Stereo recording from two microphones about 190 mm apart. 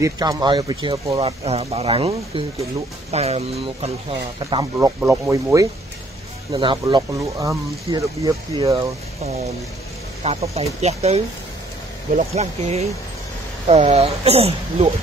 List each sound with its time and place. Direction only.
0.0 s speech: 20° right (ahead or behind)
1.4 s speech: 30° right (ahead or behind)
4.7 s speech: 15° right (ahead or behind); by 11.2 s 35° right (ahead or behind)
12.4 s speech: 35° right (ahead or behind)